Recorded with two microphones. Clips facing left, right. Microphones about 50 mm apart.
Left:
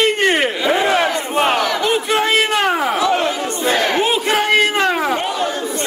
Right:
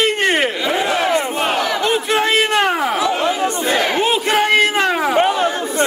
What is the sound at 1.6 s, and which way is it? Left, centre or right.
A man's voice, centre.